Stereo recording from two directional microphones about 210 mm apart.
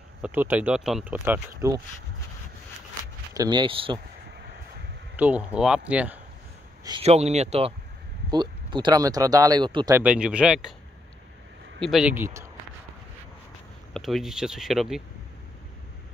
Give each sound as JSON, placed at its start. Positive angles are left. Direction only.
{"t": 0.2, "sound": "speech", "side_deg": -10}
{"t": 3.3, "sound": "speech", "side_deg": -20}
{"t": 5.1, "sound": "speech", "side_deg": -5}
{"t": 6.8, "sound": "a sound", "side_deg": -20}
{"t": 7.1, "sound": "speech", "side_deg": -30}
{"t": 9.9, "sound": "speech", "side_deg": -5}
{"t": 11.8, "sound": "speech", "side_deg": -5}
{"t": 13.9, "sound": "speech", "side_deg": 0}